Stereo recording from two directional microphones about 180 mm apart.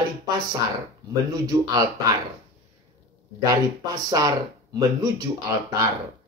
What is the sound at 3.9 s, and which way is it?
Speech, 20° right (ahead or behind).